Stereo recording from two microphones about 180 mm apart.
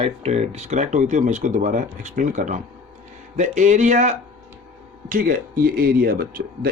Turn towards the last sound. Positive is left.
turn(degrees=-55)  # may be behind; listen again after turning